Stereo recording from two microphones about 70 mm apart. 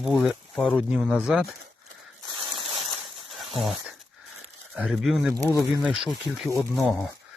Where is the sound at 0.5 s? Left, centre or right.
Centre.